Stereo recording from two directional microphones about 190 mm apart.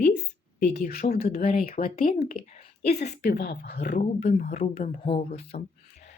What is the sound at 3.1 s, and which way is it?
Speech, 55° left (ahead or behind).